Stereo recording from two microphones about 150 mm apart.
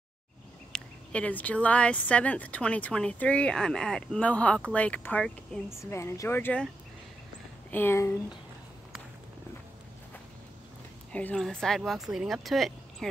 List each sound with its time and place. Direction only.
0.7 s speech: 10° left (ahead or behind)
5.8 s speech: 20° left (ahead or behind)
7.7 s speech: 15° left (ahead or behind)
11.1 s speech: 10° left (ahead or behind)